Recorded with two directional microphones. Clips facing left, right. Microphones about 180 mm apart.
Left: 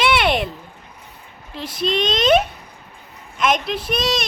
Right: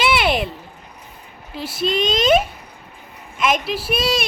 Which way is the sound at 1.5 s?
5° right (ahead or behind).